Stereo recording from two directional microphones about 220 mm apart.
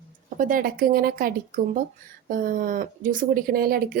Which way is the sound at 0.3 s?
40° right (ahead or behind).